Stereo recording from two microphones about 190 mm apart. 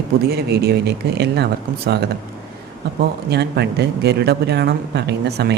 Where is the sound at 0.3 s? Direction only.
55° right (ahead or behind).